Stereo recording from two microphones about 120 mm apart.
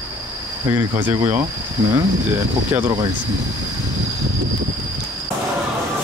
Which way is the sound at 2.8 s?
30° right (ahead or behind).